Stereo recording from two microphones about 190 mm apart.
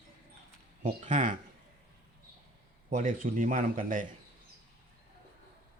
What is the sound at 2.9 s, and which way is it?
A man's voice, 45° right (ahead or behind).